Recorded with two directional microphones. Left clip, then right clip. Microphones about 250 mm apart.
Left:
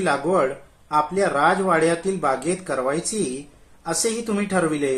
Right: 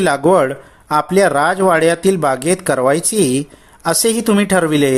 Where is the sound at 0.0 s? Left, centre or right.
Right.